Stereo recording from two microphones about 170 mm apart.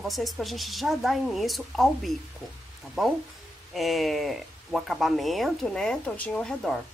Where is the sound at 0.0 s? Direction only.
Centre (ahead or behind).